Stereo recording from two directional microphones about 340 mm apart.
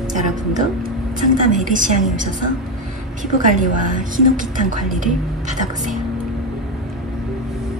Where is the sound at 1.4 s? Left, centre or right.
Right.